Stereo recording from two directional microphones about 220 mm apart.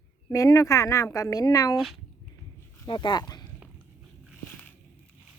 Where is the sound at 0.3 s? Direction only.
15° left (ahead or behind).